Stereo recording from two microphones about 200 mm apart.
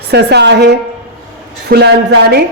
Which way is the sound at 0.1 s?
55° right (ahead or behind).